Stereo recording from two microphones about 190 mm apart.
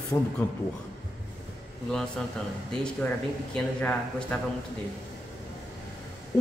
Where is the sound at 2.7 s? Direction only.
5° left (ahead or behind).